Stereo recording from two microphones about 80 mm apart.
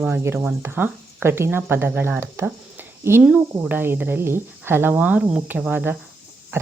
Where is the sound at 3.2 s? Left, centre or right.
Centre.